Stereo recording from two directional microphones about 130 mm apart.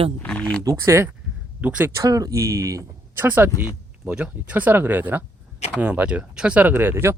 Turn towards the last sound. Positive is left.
turn(degrees=-20)  # may be behind; listen again after turning